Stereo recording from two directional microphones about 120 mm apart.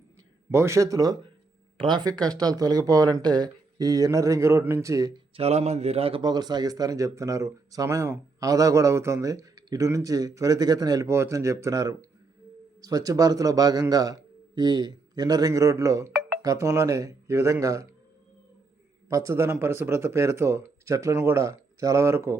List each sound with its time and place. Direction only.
0.5 s speech: 20° right (ahead or behind)
5.4 s a man's voice: 65° right (ahead or behind)
6.2 s speech: 35° right (ahead or behind)
11.0 s a man's voice: 20° right (ahead or behind)
19.0 s speech: 25° right (ahead or behind)